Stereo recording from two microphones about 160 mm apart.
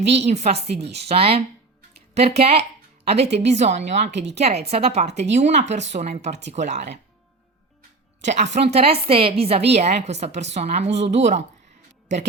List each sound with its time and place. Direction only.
0.1 s a woman's voice: 45° right (ahead or behind)
4.1 s speech: 90° right
4.4 s a woman's voice: 40° right (ahead or behind)
8.2 s a woman's voice: 45° right (ahead or behind)